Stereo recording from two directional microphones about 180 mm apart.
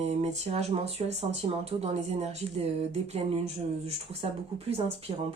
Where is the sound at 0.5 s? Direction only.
35° right (ahead or behind).